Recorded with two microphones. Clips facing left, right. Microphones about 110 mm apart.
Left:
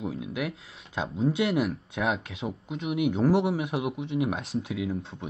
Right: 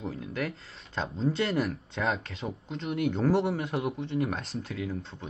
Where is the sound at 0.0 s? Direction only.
10° left (ahead or behind).